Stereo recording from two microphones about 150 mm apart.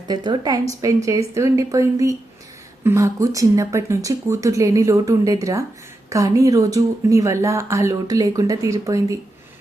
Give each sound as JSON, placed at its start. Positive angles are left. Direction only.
{"t": 0.1, "sound": "speech", "side_deg": -25}